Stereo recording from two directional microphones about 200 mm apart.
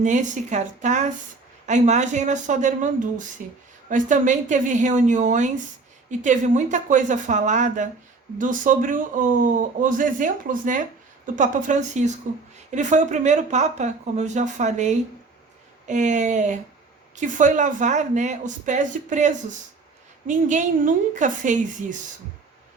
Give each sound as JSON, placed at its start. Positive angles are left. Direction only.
{"t": 0.0, "sound": "speech", "side_deg": -35}